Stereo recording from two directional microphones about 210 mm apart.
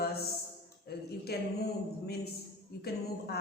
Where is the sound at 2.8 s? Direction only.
50° left (ahead or behind).